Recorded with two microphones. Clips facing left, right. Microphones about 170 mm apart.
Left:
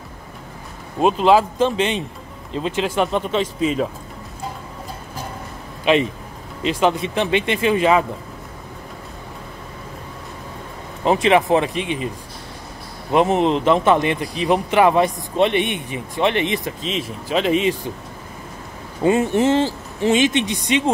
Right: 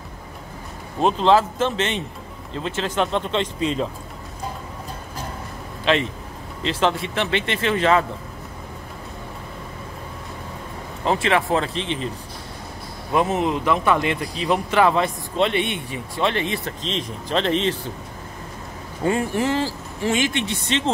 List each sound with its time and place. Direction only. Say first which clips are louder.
1.0 s speech: left 2 dB; 10° left (ahead or behind)
5.9 s speech: left 4 dB; 15° left (ahead or behind)
11.1 s speech: left 5 dB; 15° left (ahead or behind)
13.1 s speech: left 4 dB; 25° left (ahead or behind)
16.8 s speech: left 2 dB; 5° left (ahead or behind)
19.0 s speech: left 5 dB; 25° left (ahead or behind)